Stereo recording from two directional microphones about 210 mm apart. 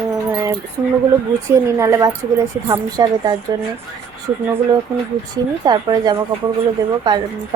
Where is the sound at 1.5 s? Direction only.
15° right (ahead or behind).